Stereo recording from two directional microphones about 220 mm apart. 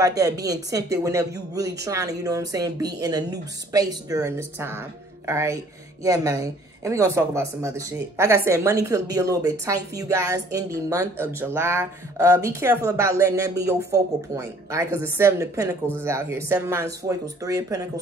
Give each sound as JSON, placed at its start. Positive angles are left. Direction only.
{"t": 0.0, "sound": "speech", "side_deg": -15}